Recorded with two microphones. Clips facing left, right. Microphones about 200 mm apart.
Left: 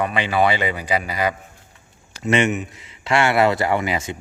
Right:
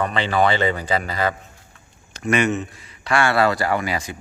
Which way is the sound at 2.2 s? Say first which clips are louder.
Left 1 dB; 25° left (ahead or behind).